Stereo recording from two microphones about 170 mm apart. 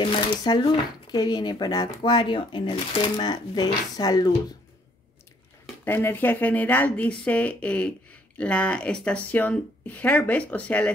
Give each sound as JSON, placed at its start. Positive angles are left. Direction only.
{"t": 0.0, "sound": "speech", "side_deg": 25}
{"t": 5.9, "sound": "speech", "side_deg": 10}